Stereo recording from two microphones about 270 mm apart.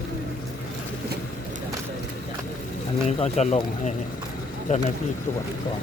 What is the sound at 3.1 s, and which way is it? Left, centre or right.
Speech, left.